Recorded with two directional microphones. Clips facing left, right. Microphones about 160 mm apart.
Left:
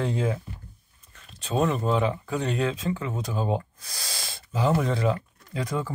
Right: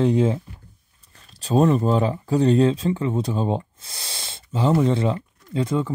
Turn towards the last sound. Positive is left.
turn(degrees=-25)  # may be behind; listen again after turning